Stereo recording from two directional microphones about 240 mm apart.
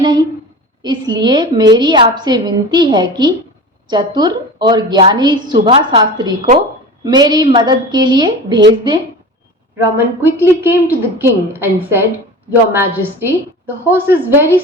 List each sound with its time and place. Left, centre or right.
0.8 s a woman's voice: centre
9.7 s a woman's voice: centre